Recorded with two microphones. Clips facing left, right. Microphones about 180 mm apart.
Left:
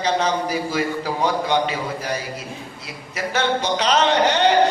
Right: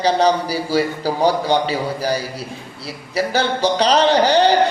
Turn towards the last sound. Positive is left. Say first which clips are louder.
# right 3 dB
turn(degrees=-35)  # may be behind; listen again after turning